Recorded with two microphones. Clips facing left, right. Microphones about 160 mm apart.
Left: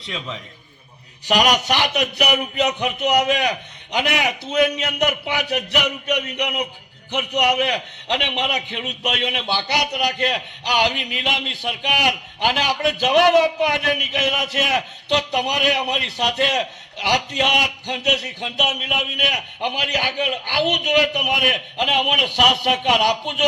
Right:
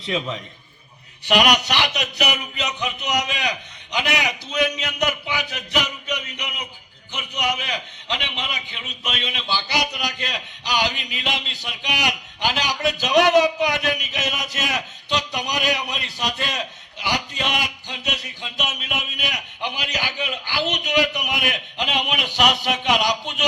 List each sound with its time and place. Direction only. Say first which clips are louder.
0.0 s a man's voice: right 5 dB; 5° right (ahead or behind)
1.2 s a man's voice: even; 40° left (ahead or behind); by 23.5 s 60° left (ahead or behind)